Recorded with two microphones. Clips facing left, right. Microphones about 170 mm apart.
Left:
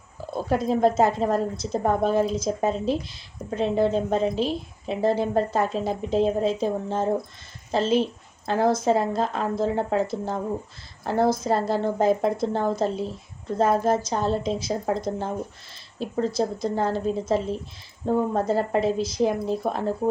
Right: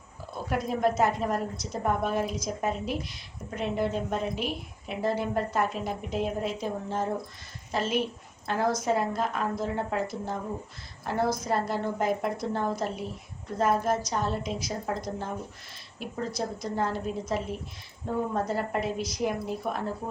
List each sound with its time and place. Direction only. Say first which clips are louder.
0.4 s a woman's voice: left 6 dB; 30° left (ahead or behind)